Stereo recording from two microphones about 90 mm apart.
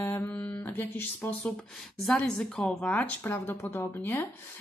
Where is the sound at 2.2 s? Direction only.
5° left (ahead or behind).